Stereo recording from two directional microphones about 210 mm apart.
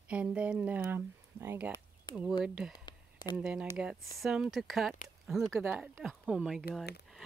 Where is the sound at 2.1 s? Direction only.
20° left (ahead or behind).